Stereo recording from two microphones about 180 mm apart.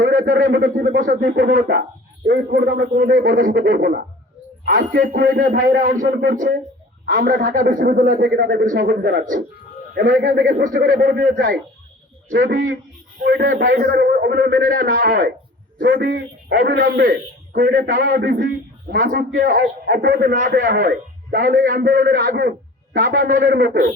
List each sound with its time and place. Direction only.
0.0 s a man's voice: 50° right (ahead or behind)
13.2 s a man's voice: 80° right; by 18.2 s 50° right (ahead or behind)
18.2 s a man's voice: 65° right (ahead or behind)